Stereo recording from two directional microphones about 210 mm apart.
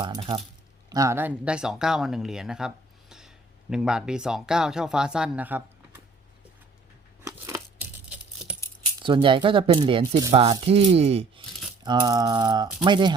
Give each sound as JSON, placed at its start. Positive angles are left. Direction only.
{"t": 0.0, "sound": "speech", "side_deg": -25}
{"t": 7.3, "sound": "scissors", "side_deg": -15}
{"t": 9.0, "sound": "speech", "side_deg": -20}